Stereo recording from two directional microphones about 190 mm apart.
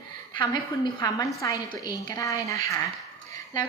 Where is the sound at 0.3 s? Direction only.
20° left (ahead or behind).